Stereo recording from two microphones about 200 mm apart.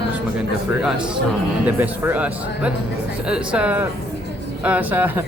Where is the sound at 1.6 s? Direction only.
10° right (ahead or behind).